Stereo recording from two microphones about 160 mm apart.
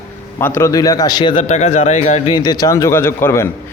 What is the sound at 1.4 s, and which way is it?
Speech, 45° left (ahead or behind).